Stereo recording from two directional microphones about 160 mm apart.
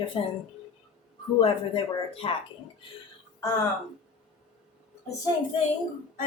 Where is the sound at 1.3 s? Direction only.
35° left (ahead or behind).